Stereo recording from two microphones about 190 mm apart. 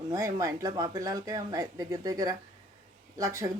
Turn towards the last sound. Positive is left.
turn(degrees=-15)  # may be behind; listen again after turning